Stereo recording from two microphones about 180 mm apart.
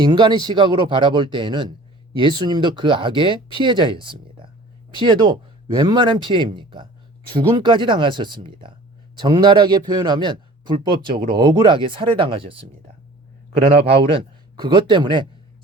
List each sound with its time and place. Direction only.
0.0 s speech: 25° right (ahead or behind)
13.8 s speech: 30° right (ahead or behind)